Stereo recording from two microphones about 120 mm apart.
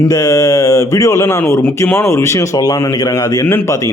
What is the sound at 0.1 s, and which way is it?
Speech, 30° left (ahead or behind).